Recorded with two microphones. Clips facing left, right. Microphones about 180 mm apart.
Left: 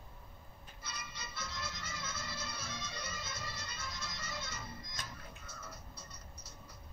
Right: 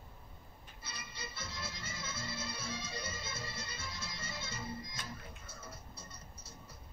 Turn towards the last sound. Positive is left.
turn(degrees=-25)  # may be behind; listen again after turning